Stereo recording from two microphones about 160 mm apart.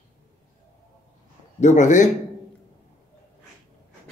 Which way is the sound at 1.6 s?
50° left (ahead or behind).